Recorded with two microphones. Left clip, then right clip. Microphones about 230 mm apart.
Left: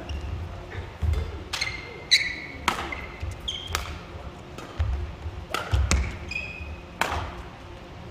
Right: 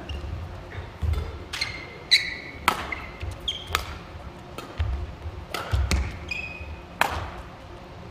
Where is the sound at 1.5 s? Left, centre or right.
Left.